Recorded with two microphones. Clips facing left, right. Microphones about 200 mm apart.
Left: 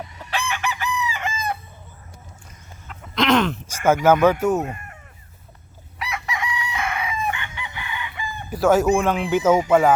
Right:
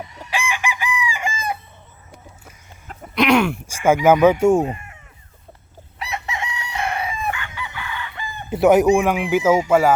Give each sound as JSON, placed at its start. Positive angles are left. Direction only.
{"t": 0.3, "sound": "chicken", "side_deg": -10}
{"t": 2.8, "sound": "chicken", "side_deg": -40}
{"t": 3.2, "sound": "speech", "side_deg": -15}
{"t": 4.4, "sound": "speech", "side_deg": -30}
{"t": 6.0, "sound": "chicken", "side_deg": -25}
{"t": 8.4, "sound": "speech", "side_deg": -20}